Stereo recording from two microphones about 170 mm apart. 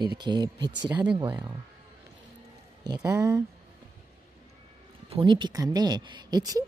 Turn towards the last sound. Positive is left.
turn(degrees=-25)  # may be behind; listen again after turning